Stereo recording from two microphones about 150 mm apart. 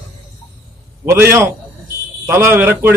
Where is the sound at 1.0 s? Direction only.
15° right (ahead or behind).